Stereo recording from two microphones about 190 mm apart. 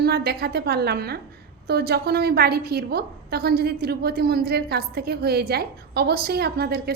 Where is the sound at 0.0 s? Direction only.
55° right (ahead or behind).